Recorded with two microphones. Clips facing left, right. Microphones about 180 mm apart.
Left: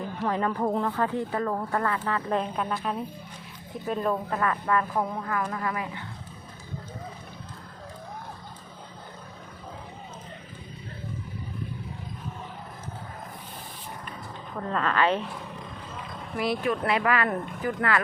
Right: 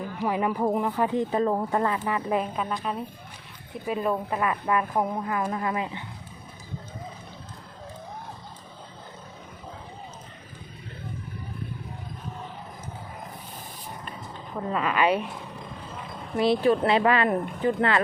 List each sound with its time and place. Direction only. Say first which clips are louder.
0.3 s speech: right 2 dB; 10° right (ahead or behind)
3.8 s speech: right 1 dB; 5° right (ahead or behind)
14.5 s speech: right 1 dB; 10° right (ahead or behind)
16.3 s speech: right 6 dB; 25° right (ahead or behind)